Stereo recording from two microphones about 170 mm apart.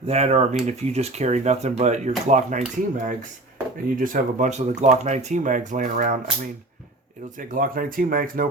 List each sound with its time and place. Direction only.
0.1 s speech: 40° right (ahead or behind)
7.3 s speech: 50° right (ahead or behind)